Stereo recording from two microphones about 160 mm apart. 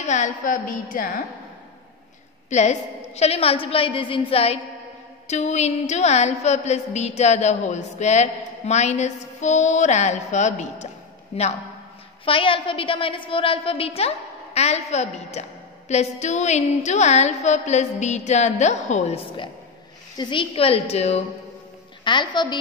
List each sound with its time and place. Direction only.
0.0 s a woman's voice: 50° left (ahead or behind)
2.5 s a woman's voice: 45° left (ahead or behind)
20.2 s a woman's voice: 30° left (ahead or behind)
22.0 s a woman's voice: 30° left (ahead or behind)